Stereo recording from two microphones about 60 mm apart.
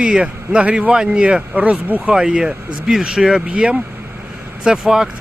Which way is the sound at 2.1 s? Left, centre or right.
Centre.